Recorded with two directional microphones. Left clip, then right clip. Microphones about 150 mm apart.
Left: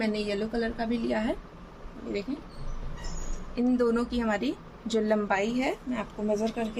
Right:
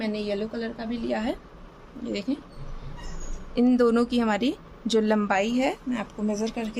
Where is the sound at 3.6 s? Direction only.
55° right (ahead or behind).